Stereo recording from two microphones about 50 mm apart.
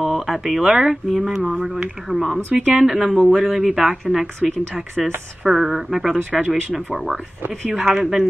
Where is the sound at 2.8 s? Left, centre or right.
Centre.